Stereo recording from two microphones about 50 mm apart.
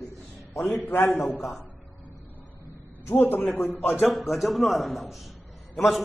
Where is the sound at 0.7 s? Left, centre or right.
Left.